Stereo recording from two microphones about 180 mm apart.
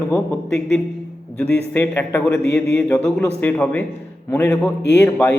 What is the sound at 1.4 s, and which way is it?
A man's voice, 10° left (ahead or behind).